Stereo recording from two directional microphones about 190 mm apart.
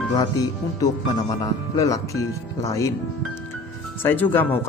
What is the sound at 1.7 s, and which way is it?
Speech, 20° left (ahead or behind).